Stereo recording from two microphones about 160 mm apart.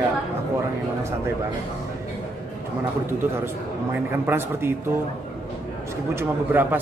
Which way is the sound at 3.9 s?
15° right (ahead or behind).